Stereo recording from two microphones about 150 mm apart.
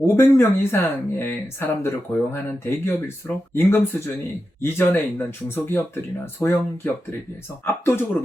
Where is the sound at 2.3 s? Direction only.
15° left (ahead or behind).